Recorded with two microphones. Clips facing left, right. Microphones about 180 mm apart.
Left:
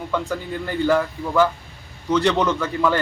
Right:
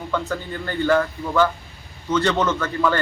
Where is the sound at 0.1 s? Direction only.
5° left (ahead or behind).